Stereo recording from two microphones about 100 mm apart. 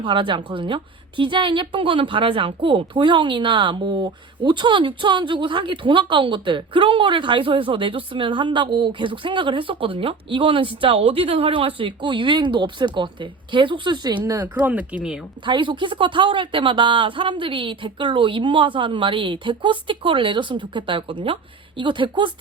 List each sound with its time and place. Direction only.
0.0 s a woman's voice: 55° right (ahead or behind)
14.6 s speech: 15° right (ahead or behind)
15.4 s a woman's voice: 55° right (ahead or behind)